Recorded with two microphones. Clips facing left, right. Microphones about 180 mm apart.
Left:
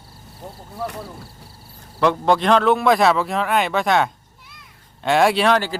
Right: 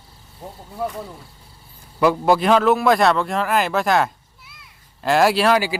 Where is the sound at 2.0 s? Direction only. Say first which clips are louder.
Right 1 dB; 5° right (ahead or behind).